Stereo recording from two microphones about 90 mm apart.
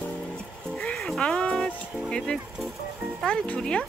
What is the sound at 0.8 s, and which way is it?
Music, 10° left (ahead or behind).